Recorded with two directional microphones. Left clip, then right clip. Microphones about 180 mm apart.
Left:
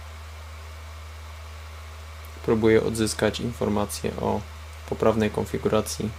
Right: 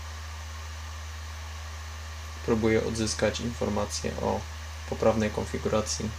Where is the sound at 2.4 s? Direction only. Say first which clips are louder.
Left 5 dB; 50° left (ahead or behind).